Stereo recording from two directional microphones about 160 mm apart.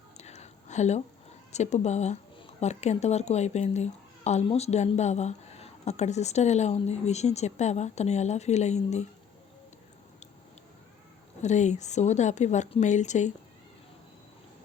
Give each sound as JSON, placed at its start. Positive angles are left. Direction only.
{"t": 0.2, "sound": "a sound", "side_deg": 45}
{"t": 1.5, "sound": "speech", "side_deg": 45}
{"t": 11.4, "sound": "speech", "side_deg": 45}